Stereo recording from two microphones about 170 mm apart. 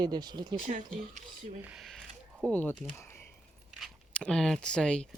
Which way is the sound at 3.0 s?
15° left (ahead or behind).